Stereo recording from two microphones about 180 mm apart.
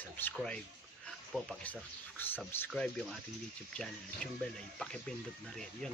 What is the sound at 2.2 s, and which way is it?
Speech, 10° left (ahead or behind).